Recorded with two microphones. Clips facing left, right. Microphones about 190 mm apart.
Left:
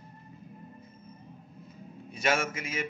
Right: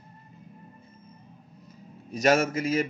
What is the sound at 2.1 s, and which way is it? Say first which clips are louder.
Speech: right 7 dB; 40° right (ahead or behind).